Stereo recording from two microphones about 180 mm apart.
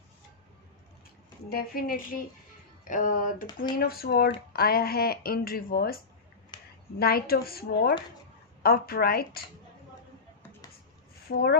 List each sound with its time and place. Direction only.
1.5 s speech: 55° left (ahead or behind)
2.8 s music: 45° left (ahead or behind)
3.7 s speech: 55° left (ahead or behind)
6.5 s a sound: 25° left (ahead or behind)
7.0 s speech: 60° left (ahead or behind)
11.2 s speech: 60° left (ahead or behind)